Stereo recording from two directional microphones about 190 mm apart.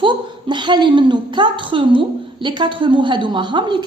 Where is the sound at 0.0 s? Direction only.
25° right (ahead or behind).